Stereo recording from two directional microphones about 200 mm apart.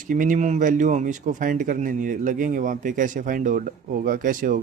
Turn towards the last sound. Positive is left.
turn(degrees=-45)  # may be behind; listen again after turning